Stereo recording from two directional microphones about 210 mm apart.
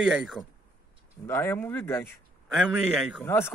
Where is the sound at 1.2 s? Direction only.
10° left (ahead or behind).